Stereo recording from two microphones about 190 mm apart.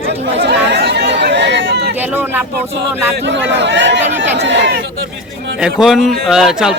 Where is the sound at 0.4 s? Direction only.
65° right (ahead or behind).